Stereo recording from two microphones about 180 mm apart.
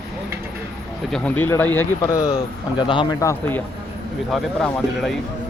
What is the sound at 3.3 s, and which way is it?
Speech, 10° left (ahead or behind).